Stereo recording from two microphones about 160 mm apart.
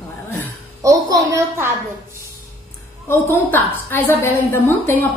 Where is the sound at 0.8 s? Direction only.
20° right (ahead or behind).